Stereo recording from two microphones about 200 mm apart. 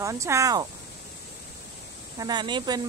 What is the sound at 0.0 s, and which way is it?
Speech, 15° right (ahead or behind).